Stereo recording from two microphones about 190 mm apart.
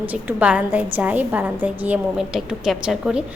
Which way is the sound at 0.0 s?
10° right (ahead or behind).